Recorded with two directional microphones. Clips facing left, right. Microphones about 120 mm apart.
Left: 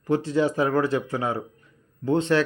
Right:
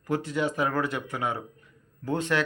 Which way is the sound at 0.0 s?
30° left (ahead or behind).